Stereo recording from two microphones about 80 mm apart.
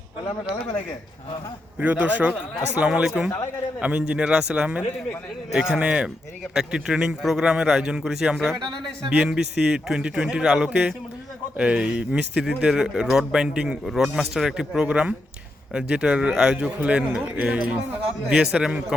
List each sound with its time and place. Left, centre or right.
1.8 s a man's voice: centre